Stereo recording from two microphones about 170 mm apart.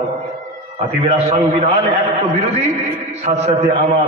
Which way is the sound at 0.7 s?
35° right (ahead or behind).